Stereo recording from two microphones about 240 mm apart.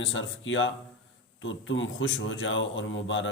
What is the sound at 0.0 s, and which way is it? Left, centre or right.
A man's voice, left.